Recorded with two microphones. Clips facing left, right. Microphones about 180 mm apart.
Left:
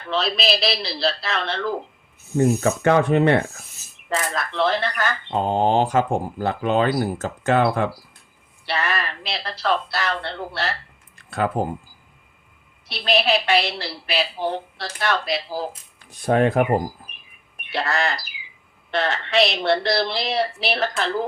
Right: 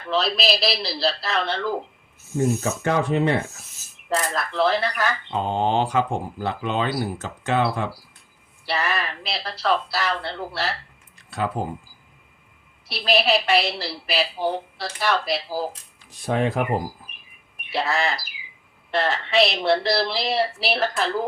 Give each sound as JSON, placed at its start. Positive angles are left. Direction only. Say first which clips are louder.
{"t": 0.0, "sound": "a woman's voice", "louder": "even", "side_deg": 0}
{"t": 2.6, "sound": "speech", "louder": "left 5 dB", "side_deg": 60}
{"t": 3.5, "sound": "speech", "louder": "left 3 dB", "side_deg": 0}
{"t": 5.3, "sound": "speech", "louder": "left 5 dB", "side_deg": 40}
{"t": 8.6, "sound": "a woman's voice", "louder": "even", "side_deg": 0}
{"t": 11.3, "sound": "speech", "louder": "left 4 dB", "side_deg": 55}
{"t": 12.9, "sound": "a woman's voice", "louder": "even", "side_deg": 0}
{"t": 16.2, "sound": "speech", "louder": "left 5 dB", "side_deg": 50}
{"t": 16.5, "sound": "a woman's voice", "louder": "left 4 dB", "side_deg": 0}